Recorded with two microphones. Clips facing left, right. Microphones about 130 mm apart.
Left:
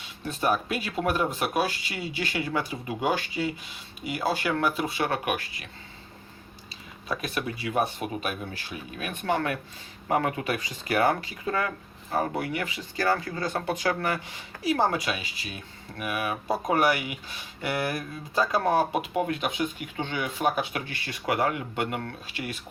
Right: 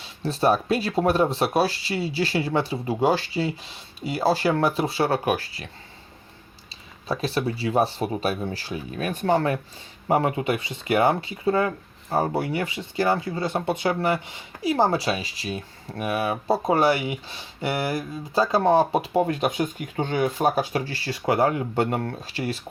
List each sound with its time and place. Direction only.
0.2 s speech: 35° right (ahead or behind)
7.1 s speech: 30° right (ahead or behind)